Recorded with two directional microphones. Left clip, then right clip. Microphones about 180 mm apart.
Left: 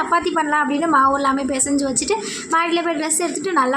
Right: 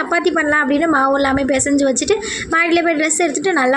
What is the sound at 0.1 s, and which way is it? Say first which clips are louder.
A woman's voice: right 5 dB; 20° right (ahead or behind).